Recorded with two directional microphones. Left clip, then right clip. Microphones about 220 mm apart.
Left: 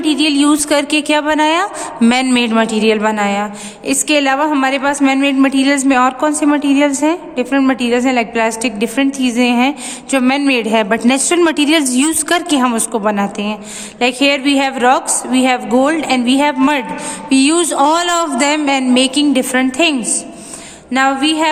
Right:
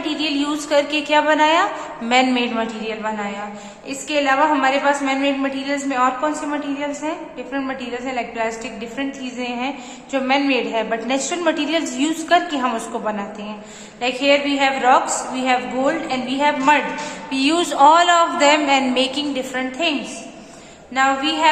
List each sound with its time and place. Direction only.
0.0 s a woman's voice: 55° left (ahead or behind)
20.9 s a woman's voice: 55° left (ahead or behind)